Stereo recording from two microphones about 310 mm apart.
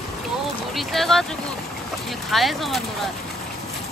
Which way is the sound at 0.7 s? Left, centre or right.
Centre.